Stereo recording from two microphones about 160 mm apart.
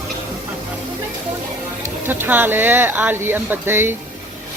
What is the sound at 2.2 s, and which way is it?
Speech, 10° right (ahead or behind).